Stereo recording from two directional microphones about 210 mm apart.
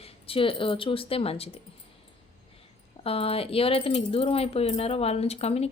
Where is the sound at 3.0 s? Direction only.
25° left (ahead or behind).